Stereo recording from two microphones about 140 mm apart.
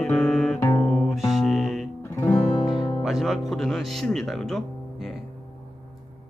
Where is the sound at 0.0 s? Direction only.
Centre (ahead or behind).